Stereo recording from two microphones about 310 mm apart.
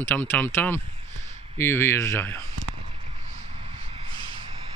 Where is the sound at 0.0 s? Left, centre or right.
Centre.